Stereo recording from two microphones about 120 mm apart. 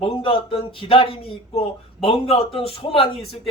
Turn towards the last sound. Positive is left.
turn(degrees=50)  # may be behind; listen again after turning